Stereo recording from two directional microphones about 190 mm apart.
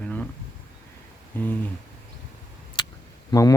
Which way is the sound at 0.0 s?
5° left (ahead or behind).